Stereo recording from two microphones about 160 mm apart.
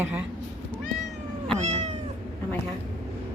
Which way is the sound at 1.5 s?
45° right (ahead or behind).